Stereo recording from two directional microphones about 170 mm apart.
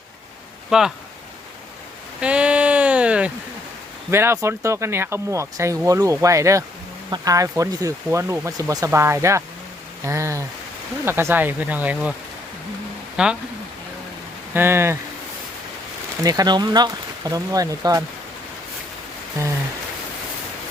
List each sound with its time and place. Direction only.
0.7 s speech: 5° right (ahead or behind)
2.2 s a sound: 5° right (ahead or behind)
4.1 s speech: 15° right (ahead or behind)
13.2 s speech: 5° right (ahead or behind)
14.5 s speech: 15° right (ahead or behind)
16.2 s speech: 20° right (ahead or behind)